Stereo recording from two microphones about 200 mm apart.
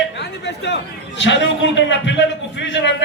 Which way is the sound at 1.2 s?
65° left (ahead or behind).